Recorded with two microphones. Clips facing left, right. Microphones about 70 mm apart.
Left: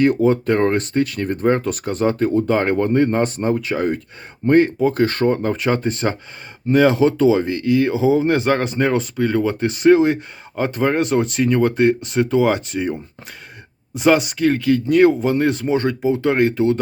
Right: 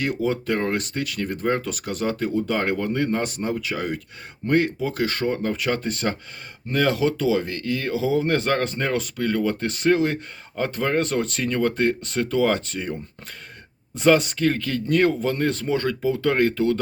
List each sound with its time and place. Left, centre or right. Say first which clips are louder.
0.0 s speech: left 9 dB; left; by 16.8 s centre